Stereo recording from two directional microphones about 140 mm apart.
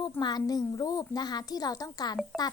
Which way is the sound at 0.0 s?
30° left (ahead or behind).